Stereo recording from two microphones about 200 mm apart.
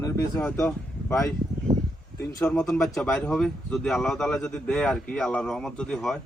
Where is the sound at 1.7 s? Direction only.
20° right (ahead or behind).